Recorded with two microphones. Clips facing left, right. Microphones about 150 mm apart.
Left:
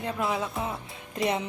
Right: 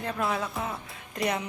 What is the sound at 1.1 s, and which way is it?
Speech, 25° left (ahead or behind).